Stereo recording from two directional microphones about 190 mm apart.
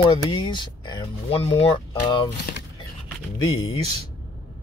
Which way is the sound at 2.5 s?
50° left (ahead or behind).